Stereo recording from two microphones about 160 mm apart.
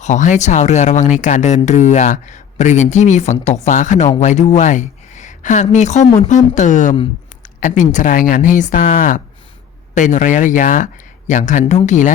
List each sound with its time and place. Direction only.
0.0 s speech: 50° left (ahead or behind)